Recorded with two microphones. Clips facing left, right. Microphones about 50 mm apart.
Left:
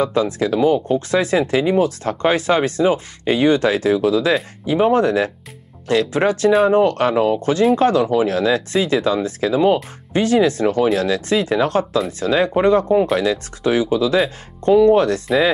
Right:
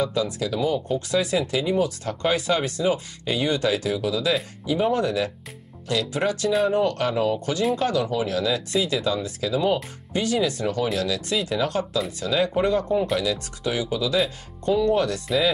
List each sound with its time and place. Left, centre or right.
0.0 s speech: left